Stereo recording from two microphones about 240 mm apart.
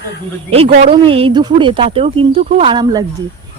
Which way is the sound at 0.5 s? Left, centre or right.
Right.